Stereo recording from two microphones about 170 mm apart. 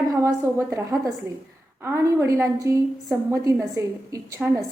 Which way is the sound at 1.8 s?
15° right (ahead or behind).